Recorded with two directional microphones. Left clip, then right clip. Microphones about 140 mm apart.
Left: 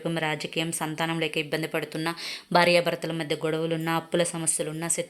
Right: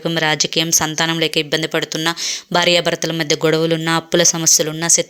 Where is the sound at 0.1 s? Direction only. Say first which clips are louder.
Right 13 dB; 30° right (ahead or behind).